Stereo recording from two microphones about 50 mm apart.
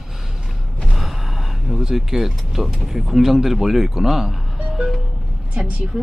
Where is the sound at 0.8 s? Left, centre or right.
Centre.